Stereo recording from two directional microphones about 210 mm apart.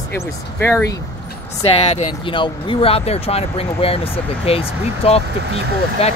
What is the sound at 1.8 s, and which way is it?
Speech, 30° left (ahead or behind).